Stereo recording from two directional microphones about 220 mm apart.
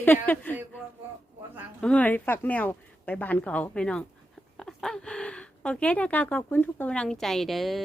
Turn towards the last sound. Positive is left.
turn(degrees=0)  # may be behind; listen again after turning